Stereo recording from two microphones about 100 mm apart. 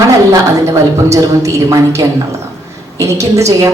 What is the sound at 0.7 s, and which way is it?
A man's voice, 30° right (ahead or behind).